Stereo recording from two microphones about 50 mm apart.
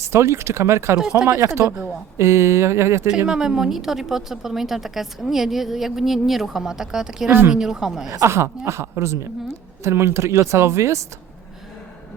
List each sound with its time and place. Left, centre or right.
0.0 s a woman's voice: right
3.2 s a woman's voice: centre
7.3 s speech: right
7.5 s a woman's voice: centre
8.2 s a woman's voice: right